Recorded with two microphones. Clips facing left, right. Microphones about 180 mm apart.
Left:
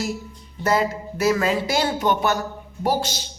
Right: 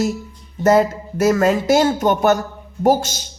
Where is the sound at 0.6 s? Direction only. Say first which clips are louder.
Right 7 dB; 45° right (ahead or behind).